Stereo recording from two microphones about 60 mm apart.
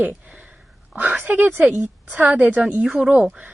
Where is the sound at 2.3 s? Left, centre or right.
Right.